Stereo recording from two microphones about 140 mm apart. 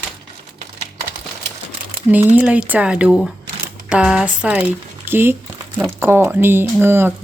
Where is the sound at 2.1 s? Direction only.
10° right (ahead or behind).